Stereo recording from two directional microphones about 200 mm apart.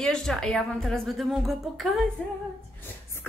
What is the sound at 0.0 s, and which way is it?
A woman's voice, centre (ahead or behind).